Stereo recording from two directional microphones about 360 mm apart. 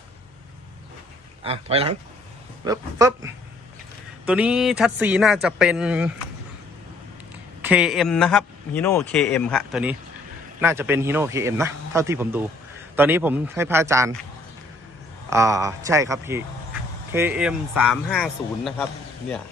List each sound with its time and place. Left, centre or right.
1.5 s a man's voice: centre
4.3 s a man's voice: centre
7.6 s a man's voice: centre
15.3 s a man's voice: centre